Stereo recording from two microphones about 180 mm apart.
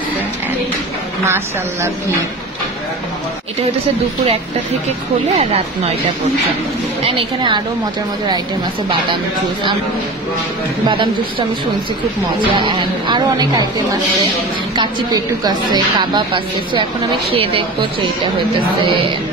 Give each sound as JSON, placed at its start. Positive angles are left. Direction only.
{"t": 1.2, "sound": "speech", "side_deg": -15}
{"t": 5.3, "sound": "speech", "side_deg": -40}
{"t": 7.1, "sound": "a woman's voice", "side_deg": -30}
{"t": 10.9, "sound": "a woman's voice", "side_deg": -30}
{"t": 12.4, "sound": "a woman's voice", "side_deg": -25}
{"t": 14.8, "sound": "a woman's voice", "side_deg": -25}